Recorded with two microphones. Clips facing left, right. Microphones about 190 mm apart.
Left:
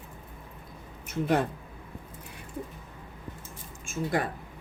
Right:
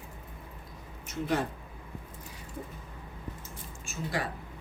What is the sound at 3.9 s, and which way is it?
Speech, 50° left (ahead or behind).